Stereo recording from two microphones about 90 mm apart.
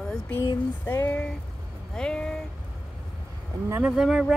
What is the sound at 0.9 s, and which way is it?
Speech, 25° left (ahead or behind).